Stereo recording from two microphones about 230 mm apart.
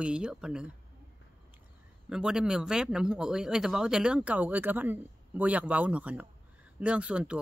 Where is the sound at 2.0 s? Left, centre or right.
Centre.